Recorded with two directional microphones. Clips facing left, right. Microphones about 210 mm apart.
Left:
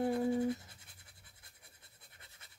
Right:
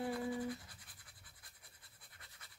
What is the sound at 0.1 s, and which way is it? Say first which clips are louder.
Scratch: left 7 dB; 25° left (ahead or behind).